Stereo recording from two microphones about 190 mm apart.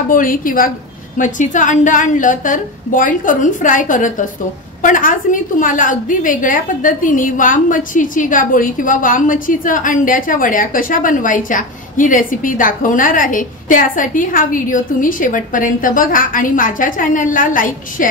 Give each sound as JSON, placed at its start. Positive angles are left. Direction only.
{"t": 0.1, "sound": "a woman's voice", "side_deg": 45}